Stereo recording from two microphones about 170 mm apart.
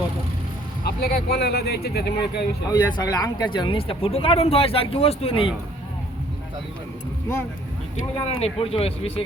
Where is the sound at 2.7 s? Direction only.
25° left (ahead or behind).